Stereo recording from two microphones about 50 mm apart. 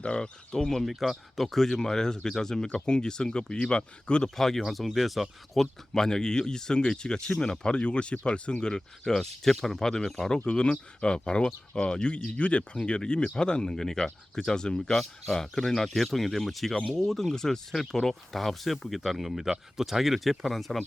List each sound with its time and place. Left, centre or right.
0.0 s speech: left
0.5 s speech: centre
0.9 s speech: centre
4.4 s speech: centre
5.9 s speech: centre